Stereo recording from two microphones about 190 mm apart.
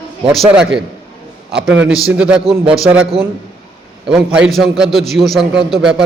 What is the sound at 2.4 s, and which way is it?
Speech, 30° right (ahead or behind).